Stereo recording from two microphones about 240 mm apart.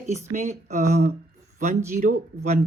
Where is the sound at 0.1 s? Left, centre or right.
Right.